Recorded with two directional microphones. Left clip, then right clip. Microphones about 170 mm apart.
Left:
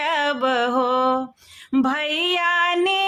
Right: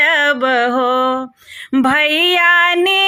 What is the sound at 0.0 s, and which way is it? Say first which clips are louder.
Mantra: right 8 dB; 20° right (ahead or behind).